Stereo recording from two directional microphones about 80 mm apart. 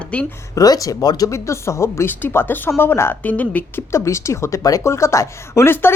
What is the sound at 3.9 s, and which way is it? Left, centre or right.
A woman's voice, left.